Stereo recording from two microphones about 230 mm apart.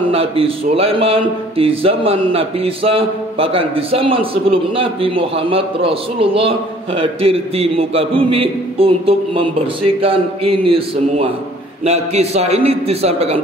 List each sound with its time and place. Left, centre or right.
0.1 s speech: right